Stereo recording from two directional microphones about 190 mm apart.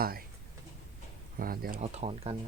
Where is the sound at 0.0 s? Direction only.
50° right (ahead or behind).